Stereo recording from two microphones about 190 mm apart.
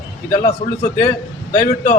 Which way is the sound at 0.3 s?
45° left (ahead or behind).